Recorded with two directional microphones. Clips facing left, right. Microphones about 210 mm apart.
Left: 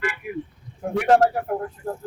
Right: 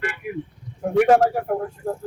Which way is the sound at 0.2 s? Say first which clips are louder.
Right 1 dB; 50° right (ahead or behind).